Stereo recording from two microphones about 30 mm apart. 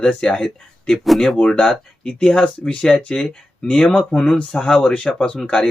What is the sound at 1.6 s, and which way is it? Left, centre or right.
Speech, centre.